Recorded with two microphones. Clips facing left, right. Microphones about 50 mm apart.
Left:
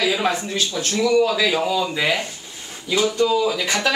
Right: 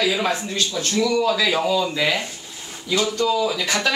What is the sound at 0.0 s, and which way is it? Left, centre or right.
A woman's voice, centre.